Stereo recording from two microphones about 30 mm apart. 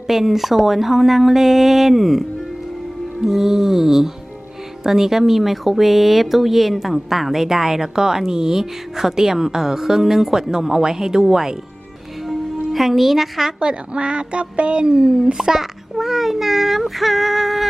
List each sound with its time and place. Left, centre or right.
0.1 s speech: centre
12.7 s speech: centre
13.6 s speech: right
15.4 s speech: centre